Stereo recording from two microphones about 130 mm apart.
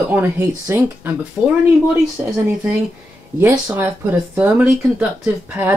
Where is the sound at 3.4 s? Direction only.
15° right (ahead or behind).